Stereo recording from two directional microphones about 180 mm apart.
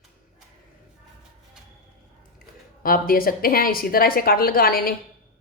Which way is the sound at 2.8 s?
55° left (ahead or behind).